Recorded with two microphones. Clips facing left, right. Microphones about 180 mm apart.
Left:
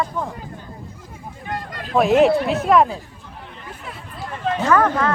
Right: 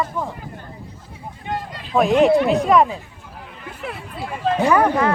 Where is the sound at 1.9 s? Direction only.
Centre (ahead or behind).